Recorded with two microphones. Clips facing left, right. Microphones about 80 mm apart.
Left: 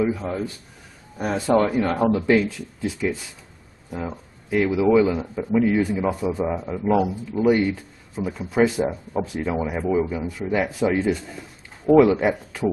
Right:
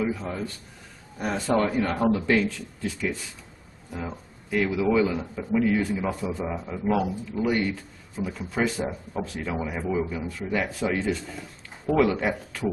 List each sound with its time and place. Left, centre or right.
0.0 s speech: centre
3.9 s a sound: centre
4.6 s speech: centre
10.4 s speech: left
10.8 s speech: centre